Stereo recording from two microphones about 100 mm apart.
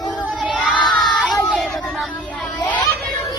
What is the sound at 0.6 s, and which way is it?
Crowd, 5° right (ahead or behind).